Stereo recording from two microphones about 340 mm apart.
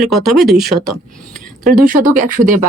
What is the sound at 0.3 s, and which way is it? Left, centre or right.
Speech, centre.